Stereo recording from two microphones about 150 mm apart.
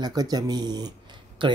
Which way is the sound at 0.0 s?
25° right (ahead or behind).